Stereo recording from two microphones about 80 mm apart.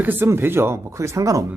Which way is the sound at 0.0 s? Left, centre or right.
Right.